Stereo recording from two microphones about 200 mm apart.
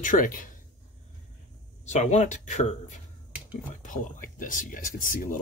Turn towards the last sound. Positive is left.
turn(degrees=40)  # may be behind; listen again after turning